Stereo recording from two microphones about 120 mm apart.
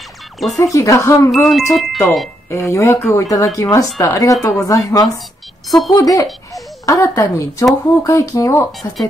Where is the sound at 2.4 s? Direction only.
25° left (ahead or behind).